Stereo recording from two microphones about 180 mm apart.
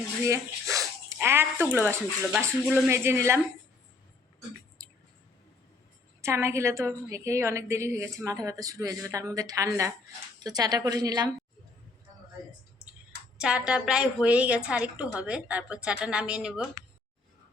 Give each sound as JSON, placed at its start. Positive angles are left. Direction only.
{"t": 0.3, "sound": "a sound", "side_deg": -15}
{"t": 1.7, "sound": "a woman's voice", "side_deg": -10}
{"t": 6.2, "sound": "a woman's voice", "side_deg": -15}
{"t": 13.4, "sound": "a woman's voice", "side_deg": -5}